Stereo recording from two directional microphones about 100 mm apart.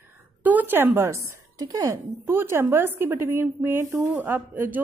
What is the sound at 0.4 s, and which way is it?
A woman's voice, 15° right (ahead or behind).